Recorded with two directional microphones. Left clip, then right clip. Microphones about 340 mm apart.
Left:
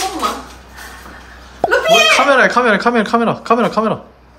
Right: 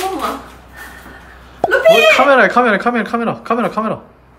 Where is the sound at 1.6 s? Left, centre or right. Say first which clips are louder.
Right 2 dB; centre.